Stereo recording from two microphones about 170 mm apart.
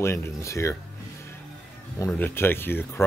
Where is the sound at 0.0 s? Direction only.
15° left (ahead or behind).